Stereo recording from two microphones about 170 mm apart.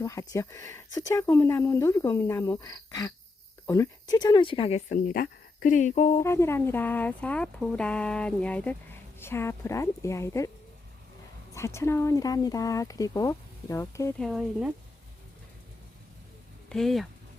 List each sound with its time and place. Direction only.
0.0 s speech: 20° left (ahead or behind)
4.1 s speech: 25° left (ahead or behind)
4.9 s speech: 60° left (ahead or behind)
6.1 s speech: 15° left (ahead or behind)
11.5 s speech: 15° left (ahead or behind)
14.2 s speech: centre (ahead or behind)
16.6 s speech: centre (ahead or behind)